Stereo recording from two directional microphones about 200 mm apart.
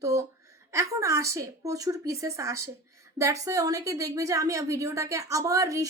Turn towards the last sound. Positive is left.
turn(degrees=-15)  # may be behind; listen again after turning